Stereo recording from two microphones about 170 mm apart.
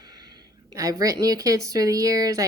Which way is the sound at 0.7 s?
20° right (ahead or behind).